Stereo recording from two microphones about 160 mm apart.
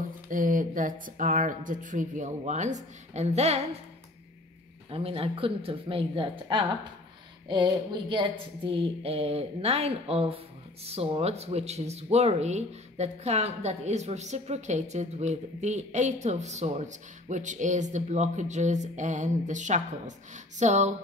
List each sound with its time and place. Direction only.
0.3 s speech: 55° right (ahead or behind)
4.9 s a woman's voice: 35° right (ahead or behind)